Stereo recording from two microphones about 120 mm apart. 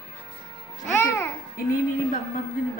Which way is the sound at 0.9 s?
15° left (ahead or behind).